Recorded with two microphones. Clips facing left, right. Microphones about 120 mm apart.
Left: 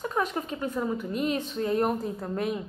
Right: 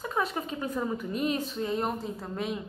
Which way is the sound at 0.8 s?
Centre (ahead or behind).